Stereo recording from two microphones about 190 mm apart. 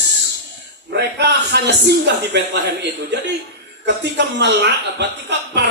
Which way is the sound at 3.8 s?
65° right (ahead or behind).